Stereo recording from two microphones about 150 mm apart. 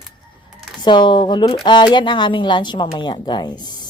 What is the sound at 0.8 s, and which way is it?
A woman's voice, 30° left (ahead or behind).